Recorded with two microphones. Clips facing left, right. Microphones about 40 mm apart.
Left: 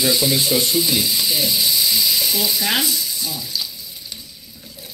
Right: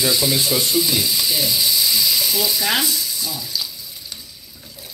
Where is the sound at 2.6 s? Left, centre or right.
Centre.